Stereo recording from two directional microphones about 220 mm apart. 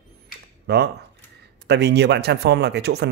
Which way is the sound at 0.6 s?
45° right (ahead or behind).